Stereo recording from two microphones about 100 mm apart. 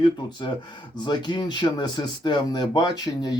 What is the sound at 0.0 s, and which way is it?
Speech, 50° left (ahead or behind).